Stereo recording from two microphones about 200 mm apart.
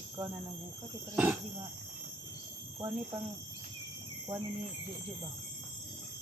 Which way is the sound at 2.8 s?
20° right (ahead or behind).